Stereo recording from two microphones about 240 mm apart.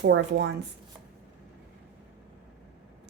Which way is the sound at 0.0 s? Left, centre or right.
Right.